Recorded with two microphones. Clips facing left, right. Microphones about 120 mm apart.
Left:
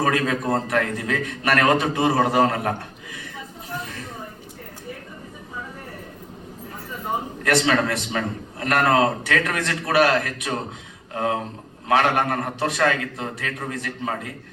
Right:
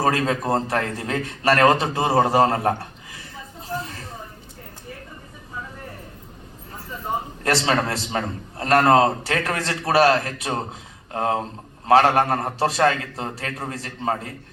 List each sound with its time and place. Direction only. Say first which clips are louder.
0.0 s a man's voice: right 1 dB; 30° right (ahead or behind)
3.7 s a sound: right 3 dB; 30° right (ahead or behind)
7.4 s a man's voice: left 1 dB; 30° right (ahead or behind)